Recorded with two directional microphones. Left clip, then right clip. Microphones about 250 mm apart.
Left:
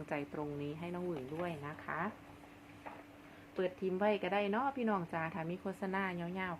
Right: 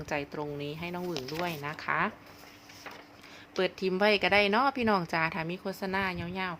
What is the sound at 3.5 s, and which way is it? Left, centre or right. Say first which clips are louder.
Speech: right 7 dB; right.